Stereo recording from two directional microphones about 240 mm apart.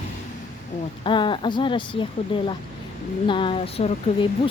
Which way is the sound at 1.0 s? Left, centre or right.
Centre.